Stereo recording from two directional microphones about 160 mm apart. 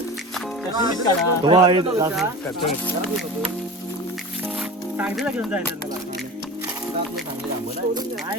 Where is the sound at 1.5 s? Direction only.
25° right (ahead or behind).